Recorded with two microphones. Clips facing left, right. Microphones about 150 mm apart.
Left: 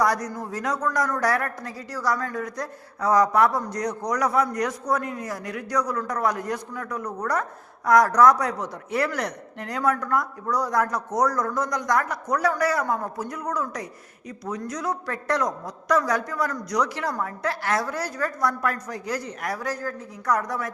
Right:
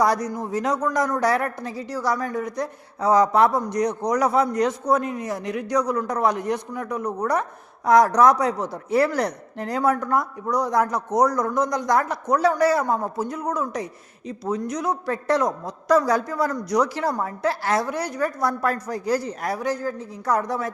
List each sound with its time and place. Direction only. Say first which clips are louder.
0.0 s a woman's voice: right 3 dB; 25° right (ahead or behind)